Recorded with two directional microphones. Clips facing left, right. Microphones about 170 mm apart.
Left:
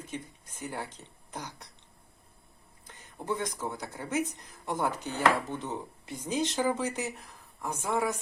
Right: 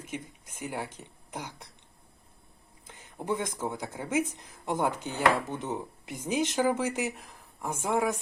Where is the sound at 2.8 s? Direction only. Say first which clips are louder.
Right 2 dB; 20° right (ahead or behind).